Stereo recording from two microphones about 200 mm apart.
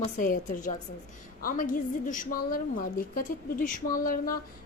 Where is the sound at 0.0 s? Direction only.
40° left (ahead or behind).